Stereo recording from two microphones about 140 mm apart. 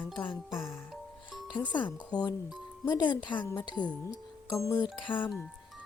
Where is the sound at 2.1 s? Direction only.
30° left (ahead or behind).